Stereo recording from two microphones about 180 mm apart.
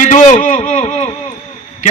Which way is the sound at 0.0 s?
45° left (ahead or behind).